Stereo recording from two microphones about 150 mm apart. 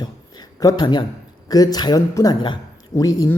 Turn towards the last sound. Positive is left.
turn(degrees=25)  # may be behind; listen again after turning